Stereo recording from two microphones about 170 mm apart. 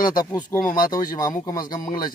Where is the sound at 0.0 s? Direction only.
25° left (ahead or behind).